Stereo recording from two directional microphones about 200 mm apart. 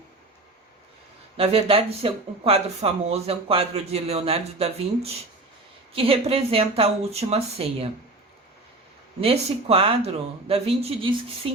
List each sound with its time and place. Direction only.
1.4 s speech: 30° right (ahead or behind)
5.9 s speech: 30° right (ahead or behind)
9.2 s speech: 30° right (ahead or behind)